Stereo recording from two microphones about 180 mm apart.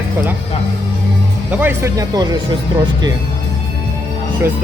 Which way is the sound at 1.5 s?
10° right (ahead or behind).